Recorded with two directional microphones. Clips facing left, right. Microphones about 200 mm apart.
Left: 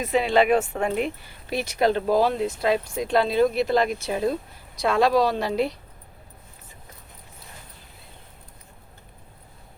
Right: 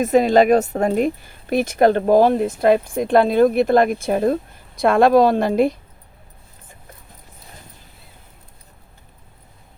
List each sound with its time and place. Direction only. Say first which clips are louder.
0.0 s speech: right 6 dB; 45° right (ahead or behind)